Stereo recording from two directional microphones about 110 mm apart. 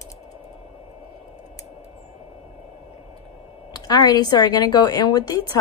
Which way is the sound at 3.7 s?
35° left (ahead or behind).